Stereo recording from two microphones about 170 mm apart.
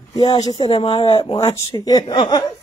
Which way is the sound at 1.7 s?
25° left (ahead or behind).